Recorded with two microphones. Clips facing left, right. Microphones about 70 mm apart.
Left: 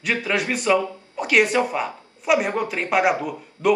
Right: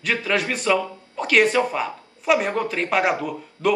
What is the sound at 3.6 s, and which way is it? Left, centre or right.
Speech, left.